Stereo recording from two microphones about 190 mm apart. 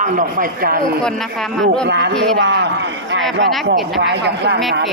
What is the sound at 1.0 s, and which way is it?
Speech, centre (ahead or behind).